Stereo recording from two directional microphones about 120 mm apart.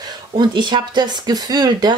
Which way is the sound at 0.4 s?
40° right (ahead or behind).